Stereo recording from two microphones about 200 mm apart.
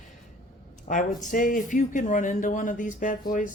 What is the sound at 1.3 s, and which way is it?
Speech, 40° left (ahead or behind).